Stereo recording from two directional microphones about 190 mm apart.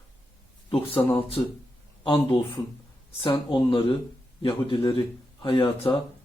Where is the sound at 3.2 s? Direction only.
25° left (ahead or behind).